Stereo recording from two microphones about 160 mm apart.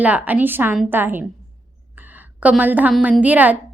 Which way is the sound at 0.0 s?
10° right (ahead or behind).